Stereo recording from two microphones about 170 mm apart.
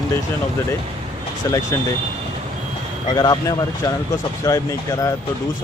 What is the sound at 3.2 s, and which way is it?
Speech, 25° left (ahead or behind).